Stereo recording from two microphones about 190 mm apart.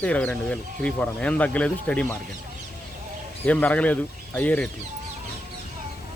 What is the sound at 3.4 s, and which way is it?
Speech, 10° left (ahead or behind).